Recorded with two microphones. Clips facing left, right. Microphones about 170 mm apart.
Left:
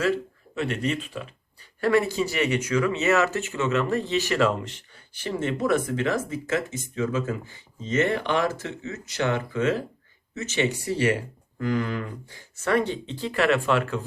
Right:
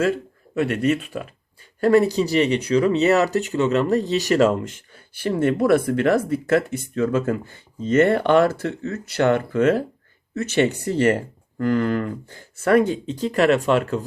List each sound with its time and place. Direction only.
0.6 s speech: 55° right (ahead or behind)
1.8 s speech: 40° right (ahead or behind)